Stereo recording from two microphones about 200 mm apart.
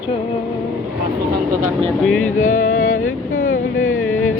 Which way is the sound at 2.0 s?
5° left (ahead or behind).